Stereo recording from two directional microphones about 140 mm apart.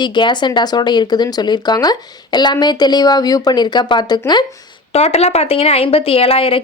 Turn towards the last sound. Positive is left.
turn(degrees=40)  # may be behind; listen again after turning